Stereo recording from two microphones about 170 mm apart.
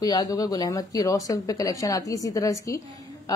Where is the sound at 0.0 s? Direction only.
20° left (ahead or behind).